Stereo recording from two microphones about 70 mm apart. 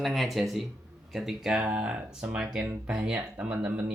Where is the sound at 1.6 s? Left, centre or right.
Centre.